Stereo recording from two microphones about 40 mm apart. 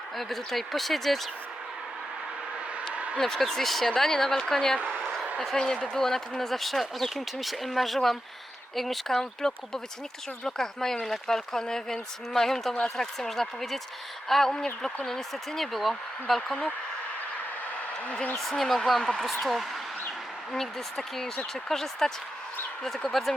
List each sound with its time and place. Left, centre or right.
0.2 s speech: centre
2.9 s a sound: right
3.2 s speech: centre
5.0 s a sound: centre
5.5 s speech: centre
18.5 s speech: centre